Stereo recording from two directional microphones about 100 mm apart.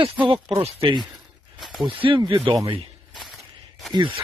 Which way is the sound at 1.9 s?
60° right (ahead or behind).